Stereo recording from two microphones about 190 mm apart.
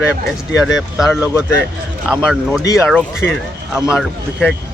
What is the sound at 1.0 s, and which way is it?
Speech, 5° right (ahead or behind).